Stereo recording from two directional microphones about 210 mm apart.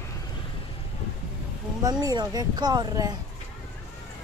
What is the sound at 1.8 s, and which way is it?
Speech, 20° right (ahead or behind).